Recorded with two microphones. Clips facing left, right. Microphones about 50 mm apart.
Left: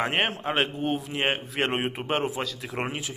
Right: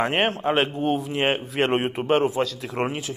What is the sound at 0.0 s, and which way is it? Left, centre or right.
A man's voice, centre.